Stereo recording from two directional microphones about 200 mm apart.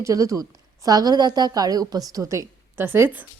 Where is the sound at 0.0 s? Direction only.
15° right (ahead or behind).